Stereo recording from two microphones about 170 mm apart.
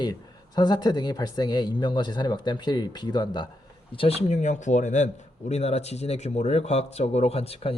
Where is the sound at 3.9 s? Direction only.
40° left (ahead or behind).